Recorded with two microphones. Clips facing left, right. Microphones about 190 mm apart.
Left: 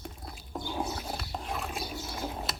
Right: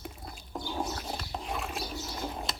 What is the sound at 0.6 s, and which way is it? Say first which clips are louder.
Bird: even; 10° left (ahead or behind).